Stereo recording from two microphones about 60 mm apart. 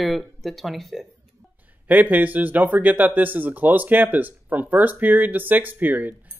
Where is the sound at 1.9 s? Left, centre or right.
Right.